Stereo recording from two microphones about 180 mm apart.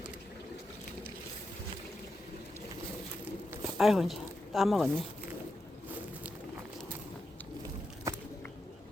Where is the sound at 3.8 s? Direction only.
Centre (ahead or behind).